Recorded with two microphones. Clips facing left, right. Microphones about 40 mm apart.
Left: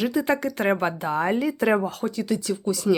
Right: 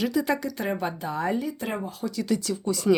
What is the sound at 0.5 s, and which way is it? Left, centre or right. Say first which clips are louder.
Speech: left 6 dB; left.